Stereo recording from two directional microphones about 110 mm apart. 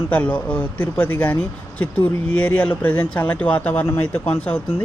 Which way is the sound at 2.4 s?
15° left (ahead or behind).